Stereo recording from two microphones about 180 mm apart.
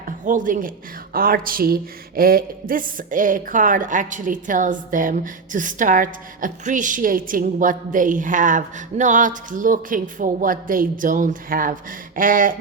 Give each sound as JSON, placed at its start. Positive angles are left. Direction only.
{"t": 0.3, "sound": "a man's voice", "side_deg": -45}